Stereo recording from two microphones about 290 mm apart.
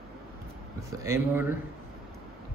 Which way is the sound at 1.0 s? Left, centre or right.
Centre.